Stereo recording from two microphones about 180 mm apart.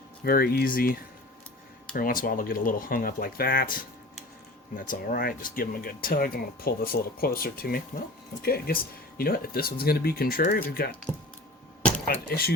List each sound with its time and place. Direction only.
0.3 s speech: 55° left (ahead or behind)
2.0 s speech: 50° left (ahead or behind)
12.3 s speech: 55° left (ahead or behind)